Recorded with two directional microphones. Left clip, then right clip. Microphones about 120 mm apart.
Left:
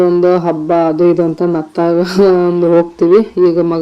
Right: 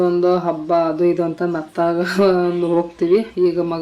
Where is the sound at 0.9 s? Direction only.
25° left (ahead or behind).